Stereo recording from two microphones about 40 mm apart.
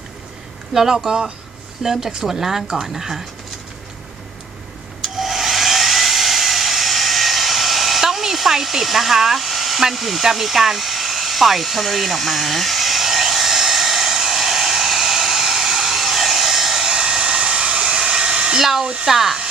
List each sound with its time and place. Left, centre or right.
0.7 s speech: centre
5.0 s hair dryer: centre
18.8 s speech: right
19.0 s speech: centre